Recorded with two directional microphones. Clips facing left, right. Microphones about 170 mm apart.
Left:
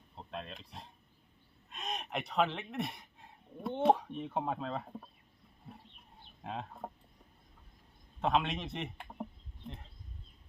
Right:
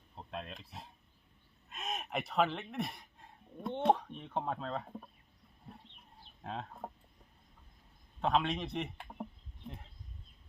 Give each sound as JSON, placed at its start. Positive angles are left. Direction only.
{"t": 0.2, "sound": "speech", "side_deg": 0}
{"t": 6.4, "sound": "speech", "side_deg": 5}
{"t": 8.2, "sound": "a man's voice", "side_deg": 0}